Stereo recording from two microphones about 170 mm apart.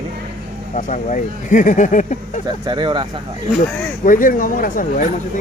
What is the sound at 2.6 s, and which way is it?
Speech, 30° right (ahead or behind).